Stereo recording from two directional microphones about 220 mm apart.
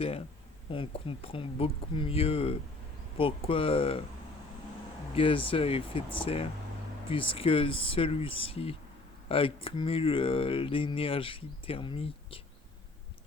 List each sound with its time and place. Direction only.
0.7 s speech: 25° left (ahead or behind)
5.1 s speech: 25° left (ahead or behind)